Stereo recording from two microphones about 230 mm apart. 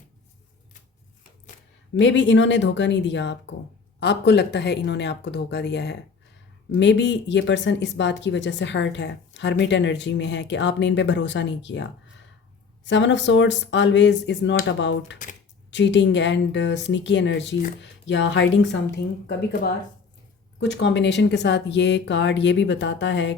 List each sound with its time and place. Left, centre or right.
2.0 s a woman's voice: left